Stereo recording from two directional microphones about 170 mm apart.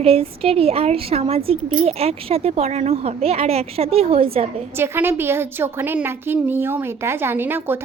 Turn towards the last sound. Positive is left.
turn(degrees=-10)  # may be behind; listen again after turning